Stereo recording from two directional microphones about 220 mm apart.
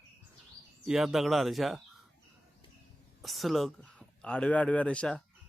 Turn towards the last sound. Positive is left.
turn(degrees=5)  # may be behind; listen again after turning